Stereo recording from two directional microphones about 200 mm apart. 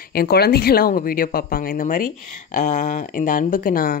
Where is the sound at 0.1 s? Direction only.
50° left (ahead or behind).